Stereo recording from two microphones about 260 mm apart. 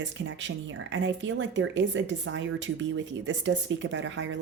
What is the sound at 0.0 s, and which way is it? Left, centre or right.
Speech, right.